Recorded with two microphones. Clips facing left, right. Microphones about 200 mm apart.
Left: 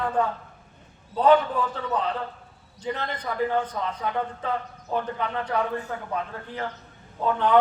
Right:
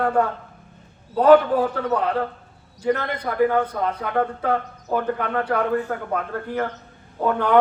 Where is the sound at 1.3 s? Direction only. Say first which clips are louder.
Right 7 dB; 60° right (ahead or behind).